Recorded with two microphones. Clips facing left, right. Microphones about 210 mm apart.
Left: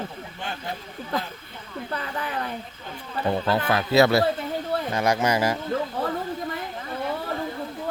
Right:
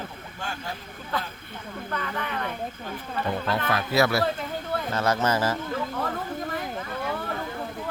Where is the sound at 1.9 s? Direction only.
30° left (ahead or behind).